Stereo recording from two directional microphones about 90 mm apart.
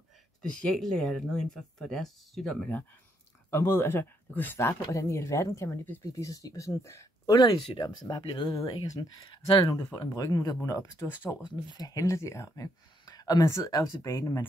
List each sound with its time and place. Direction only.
0.4 s speech: 10° left (ahead or behind)
3.4 s speech: 30° left (ahead or behind)
4.9 s speech: 35° left (ahead or behind)
7.2 s speech: 45° left (ahead or behind)
8.2 s speech: 65° left (ahead or behind)
8.8 s speech: 45° left (ahead or behind)
9.2 s speech: 70° left (ahead or behind)
9.9 s speech: 45° left (ahead or behind)
13.0 s a sound: 45° left (ahead or behind)
13.7 s speech: 35° left (ahead or behind)